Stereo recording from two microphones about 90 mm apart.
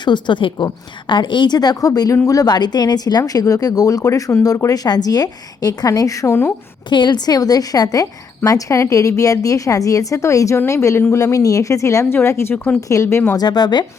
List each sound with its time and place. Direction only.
0.0 s a woman's voice: 60° left (ahead or behind); by 6.5 s 30° left (ahead or behind)
6.9 s a woman's voice: 55° left (ahead or behind); by 13.3 s 30° left (ahead or behind)
13.3 s a woman's voice: 50° left (ahead or behind)